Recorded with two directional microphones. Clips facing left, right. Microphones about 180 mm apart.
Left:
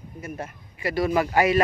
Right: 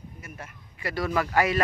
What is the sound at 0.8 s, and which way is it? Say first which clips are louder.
Speech: left 5 dB; 20° left (ahead or behind).